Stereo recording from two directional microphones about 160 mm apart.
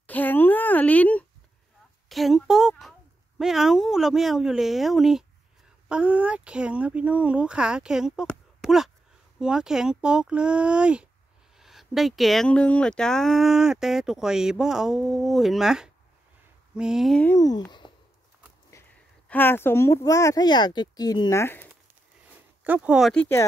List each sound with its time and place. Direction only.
0.0 s a sound: 10° left (ahead or behind)
3.3 s speech: centre (ahead or behind)
17.3 s speech: 20° left (ahead or behind)
18.7 s speech: 15° left (ahead or behind)
22.6 s speech: 10° right (ahead or behind)